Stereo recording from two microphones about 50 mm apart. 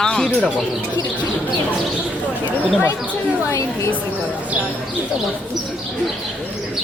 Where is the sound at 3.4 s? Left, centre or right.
Left.